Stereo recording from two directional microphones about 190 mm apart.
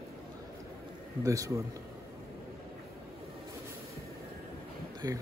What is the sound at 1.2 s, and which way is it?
Speech, 15° right (ahead or behind).